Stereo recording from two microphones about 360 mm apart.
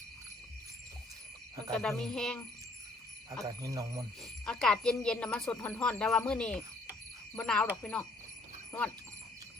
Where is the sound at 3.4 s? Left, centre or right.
Centre.